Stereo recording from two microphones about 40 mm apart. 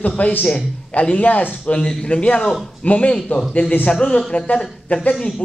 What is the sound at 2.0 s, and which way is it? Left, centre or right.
A man's voice, left.